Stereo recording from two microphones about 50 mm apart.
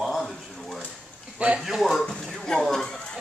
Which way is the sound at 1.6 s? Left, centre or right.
Centre.